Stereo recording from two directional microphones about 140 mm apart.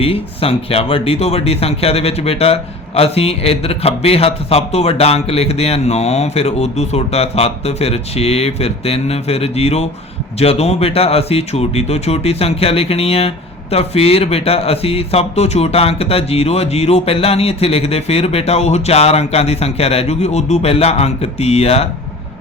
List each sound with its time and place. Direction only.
0.0 s speech: 45° left (ahead or behind)